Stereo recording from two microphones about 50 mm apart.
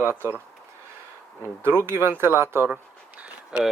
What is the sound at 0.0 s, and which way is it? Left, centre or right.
Speech, right.